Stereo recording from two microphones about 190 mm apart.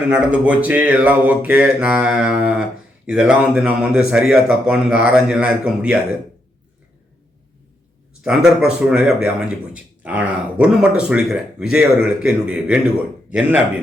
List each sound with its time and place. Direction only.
0.1 s speech: 5° right (ahead or behind)
8.2 s speech: 5° right (ahead or behind)